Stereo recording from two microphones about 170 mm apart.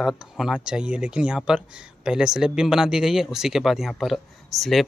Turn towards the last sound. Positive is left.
turn(degrees=0)  # may be behind; listen again after turning